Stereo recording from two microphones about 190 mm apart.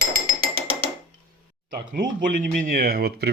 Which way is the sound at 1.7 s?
50° right (ahead or behind).